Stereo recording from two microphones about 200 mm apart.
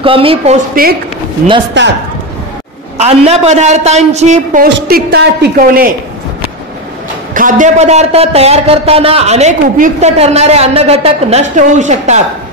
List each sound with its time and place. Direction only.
0.0 s a woman's voice: 25° right (ahead or behind)
1.8 s a man's voice: 65° right (ahead or behind)
3.0 s a man's voice: 30° right (ahead or behind)
4.8 s a woman's voice: 50° right (ahead or behind)
7.3 s a man's voice: 40° right (ahead or behind)